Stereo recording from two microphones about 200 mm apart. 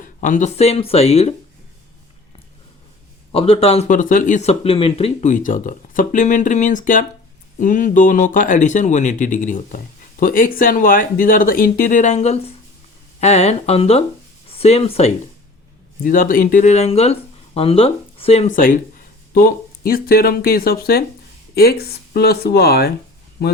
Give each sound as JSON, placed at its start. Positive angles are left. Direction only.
{"t": 0.0, "sound": "speech", "side_deg": 40}
{"t": 3.3, "sound": "speech", "side_deg": 30}
{"t": 16.0, "sound": "speech", "side_deg": 45}